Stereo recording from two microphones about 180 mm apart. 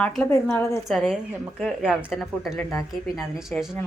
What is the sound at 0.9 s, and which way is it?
A woman's voice, centre (ahead or behind).